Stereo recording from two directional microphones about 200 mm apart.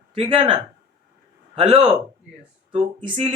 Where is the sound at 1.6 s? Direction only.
30° right (ahead or behind).